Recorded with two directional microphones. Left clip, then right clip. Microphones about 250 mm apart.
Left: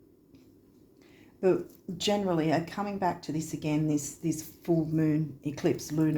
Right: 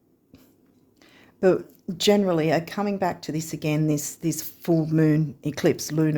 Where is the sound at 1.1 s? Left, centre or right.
Right.